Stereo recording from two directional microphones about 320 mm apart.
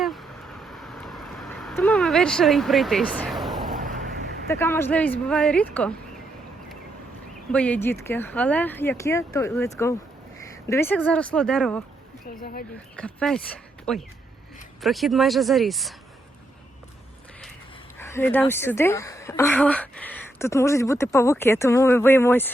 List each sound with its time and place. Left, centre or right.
0.0 s a sound: centre
3.7 s a sound: right
4.4 s speech: centre
7.5 s speech: centre
13.0 s speech: centre
18.0 s speech: centre